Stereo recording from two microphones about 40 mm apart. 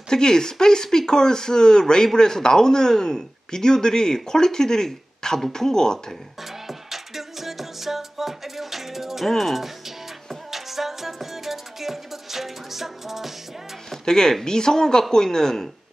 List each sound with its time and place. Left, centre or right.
0.1 s speech: centre
6.7 s music: centre
9.3 s speech: centre
10.5 s music: centre
13.8 s music: centre
14.4 s speech: centre